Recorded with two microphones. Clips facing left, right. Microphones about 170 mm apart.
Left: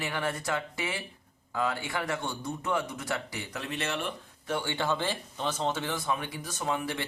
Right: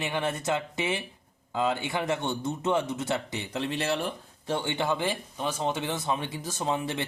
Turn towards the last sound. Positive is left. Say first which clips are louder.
# right 2 dB
turn(degrees=-25)  # may be behind; listen again after turning